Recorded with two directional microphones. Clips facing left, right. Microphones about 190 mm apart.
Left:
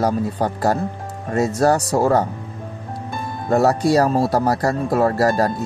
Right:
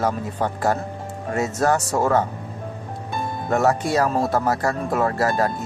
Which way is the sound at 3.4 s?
35° left (ahead or behind).